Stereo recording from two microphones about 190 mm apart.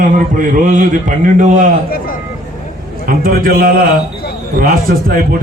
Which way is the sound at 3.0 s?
50° right (ahead or behind).